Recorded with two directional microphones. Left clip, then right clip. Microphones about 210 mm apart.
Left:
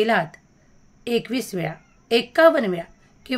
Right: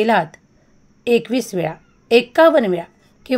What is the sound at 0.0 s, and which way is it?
A woman's voice, 15° right (ahead or behind).